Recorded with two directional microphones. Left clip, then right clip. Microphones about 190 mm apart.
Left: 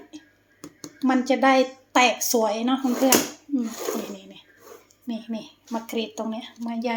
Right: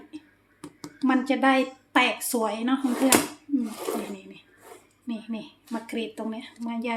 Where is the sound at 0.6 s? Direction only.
10° right (ahead or behind).